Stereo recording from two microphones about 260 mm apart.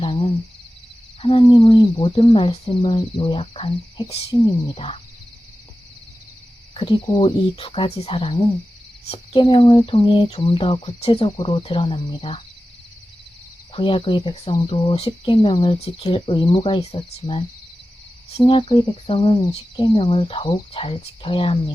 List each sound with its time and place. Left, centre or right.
0.0 s a sound: left
1.2 s speech: left
6.7 s speech: centre
13.7 s speech: centre